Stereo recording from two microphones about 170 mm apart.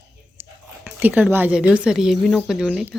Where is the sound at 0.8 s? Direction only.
10° right (ahead or behind).